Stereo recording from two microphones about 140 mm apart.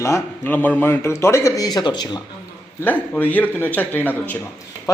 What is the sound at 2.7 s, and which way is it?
Speech, 10° left (ahead or behind).